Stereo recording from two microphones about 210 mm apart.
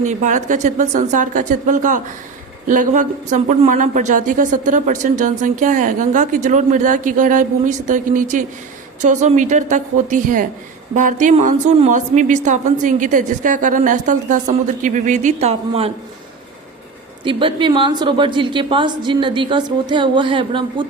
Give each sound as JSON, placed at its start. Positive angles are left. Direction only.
{"t": 0.0, "sound": "speech", "side_deg": -35}
{"t": 17.2, "sound": "a woman's voice", "side_deg": -25}